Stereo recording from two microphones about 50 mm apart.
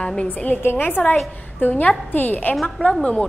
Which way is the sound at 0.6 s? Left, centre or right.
Left.